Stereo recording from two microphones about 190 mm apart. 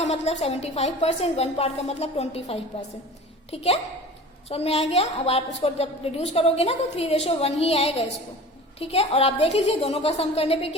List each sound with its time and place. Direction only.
0.0 s a woman's voice: 35° left (ahead or behind)